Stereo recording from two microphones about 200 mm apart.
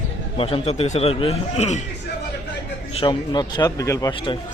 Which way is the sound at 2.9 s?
25° left (ahead or behind).